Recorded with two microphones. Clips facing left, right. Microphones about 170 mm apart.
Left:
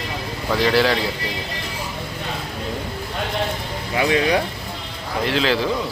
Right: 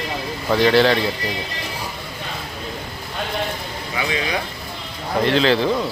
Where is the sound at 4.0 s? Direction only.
55° left (ahead or behind).